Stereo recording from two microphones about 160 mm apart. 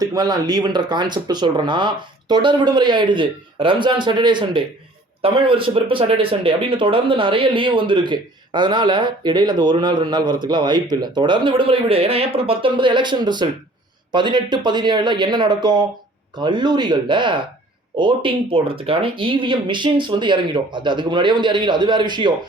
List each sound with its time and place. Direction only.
0.0 s speech: 25° right (ahead or behind)